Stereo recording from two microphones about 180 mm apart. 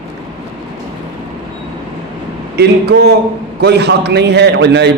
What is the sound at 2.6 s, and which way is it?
A man's voice, 65° right (ahead or behind).